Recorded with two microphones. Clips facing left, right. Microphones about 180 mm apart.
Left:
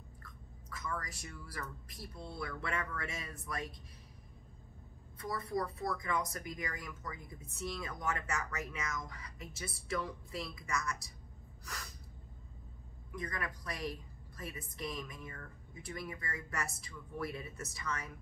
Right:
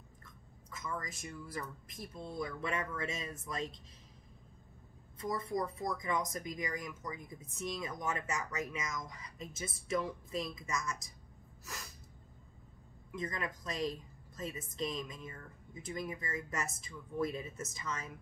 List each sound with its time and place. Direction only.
0.2 s speech: 20° right (ahead or behind)
5.2 s speech: 20° right (ahead or behind)
13.1 s a woman's voice: 20° right (ahead or behind)